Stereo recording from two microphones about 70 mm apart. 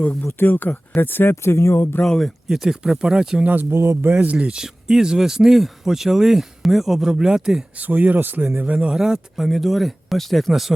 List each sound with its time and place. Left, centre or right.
0.0 s speech: left
2.0 s speech: centre
2.5 s speech: centre
3.4 s speech: right
3.8 s speech: right
4.2 s speech: centre
7.8 s speech: right
9.0 s speech: centre